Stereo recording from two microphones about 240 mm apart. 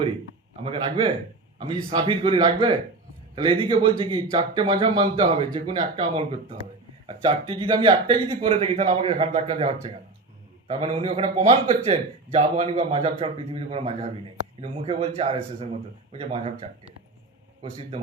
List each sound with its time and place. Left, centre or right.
0.6 s a man's voice: right
17.6 s a man's voice: right